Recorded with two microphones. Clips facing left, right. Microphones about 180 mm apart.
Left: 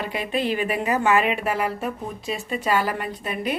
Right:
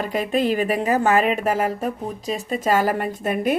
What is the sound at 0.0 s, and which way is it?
Speech, 45° right (ahead or behind).